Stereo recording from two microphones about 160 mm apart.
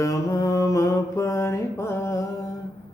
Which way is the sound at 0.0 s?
20° left (ahead or behind).